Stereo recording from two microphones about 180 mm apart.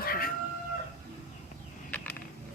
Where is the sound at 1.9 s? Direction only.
10° left (ahead or behind).